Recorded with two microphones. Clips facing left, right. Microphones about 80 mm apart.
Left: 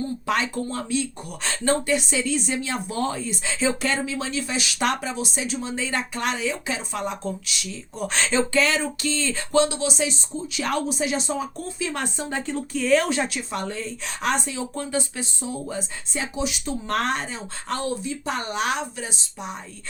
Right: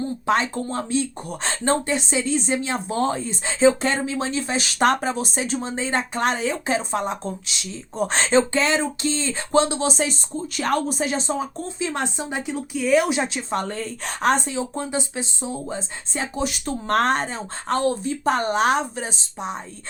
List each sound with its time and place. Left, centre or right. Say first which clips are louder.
0.3 s speech: right 4 dB; right
16.1 s speech: right 2 dB; right